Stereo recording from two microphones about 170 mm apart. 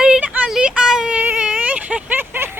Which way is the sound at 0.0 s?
5° right (ahead or behind).